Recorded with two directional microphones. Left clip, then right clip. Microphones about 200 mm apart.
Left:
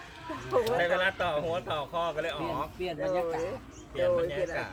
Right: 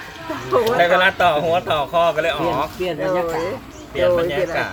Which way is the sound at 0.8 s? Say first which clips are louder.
Right 13 dB; 5° left (ahead or behind).